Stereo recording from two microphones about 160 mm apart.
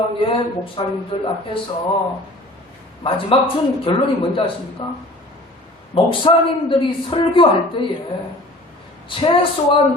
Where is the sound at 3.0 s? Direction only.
35° left (ahead or behind).